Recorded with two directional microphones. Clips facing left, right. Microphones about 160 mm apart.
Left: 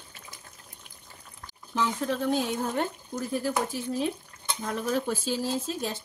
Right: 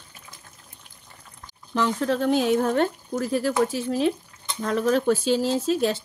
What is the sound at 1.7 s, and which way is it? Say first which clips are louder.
Speech: right 5 dB; 85° right.